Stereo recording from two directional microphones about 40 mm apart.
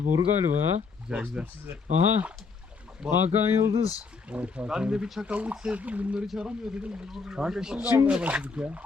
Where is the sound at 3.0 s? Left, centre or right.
Centre.